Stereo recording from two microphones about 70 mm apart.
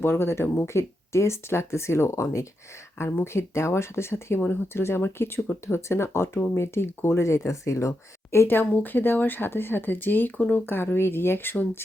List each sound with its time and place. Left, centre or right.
0.0 s speech: left
3.0 s speech: left